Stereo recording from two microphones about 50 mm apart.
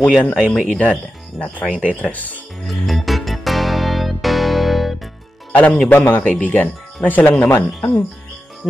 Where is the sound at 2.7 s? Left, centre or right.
Centre.